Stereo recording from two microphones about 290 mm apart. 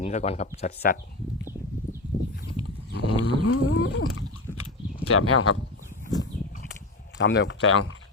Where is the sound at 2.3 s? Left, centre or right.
Left.